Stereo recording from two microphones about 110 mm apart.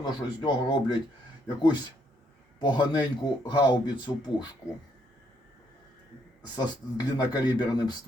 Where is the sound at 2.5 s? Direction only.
45° left (ahead or behind).